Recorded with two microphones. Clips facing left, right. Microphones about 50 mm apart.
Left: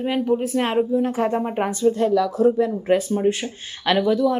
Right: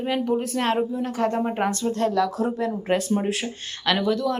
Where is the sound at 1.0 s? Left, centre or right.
Left.